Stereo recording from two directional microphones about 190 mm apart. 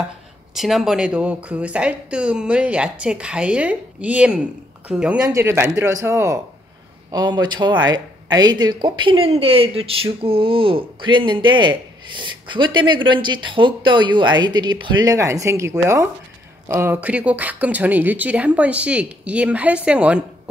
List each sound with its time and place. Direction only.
0.6 s speech: centre (ahead or behind)